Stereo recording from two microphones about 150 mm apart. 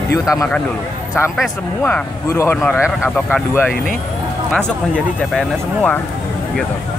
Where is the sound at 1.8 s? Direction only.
15° left (ahead or behind).